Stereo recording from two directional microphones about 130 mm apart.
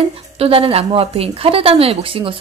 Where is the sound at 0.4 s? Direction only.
45° right (ahead or behind).